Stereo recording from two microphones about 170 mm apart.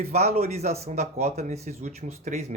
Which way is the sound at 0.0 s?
40° right (ahead or behind).